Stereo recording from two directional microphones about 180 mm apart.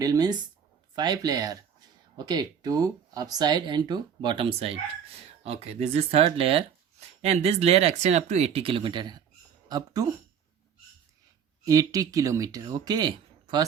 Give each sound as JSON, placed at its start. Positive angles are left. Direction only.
{"t": 0.0, "sound": "speech", "side_deg": -20}
{"t": 11.6, "sound": "speech", "side_deg": -20}